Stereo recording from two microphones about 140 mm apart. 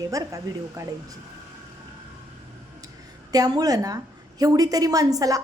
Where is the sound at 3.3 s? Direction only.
25° right (ahead or behind).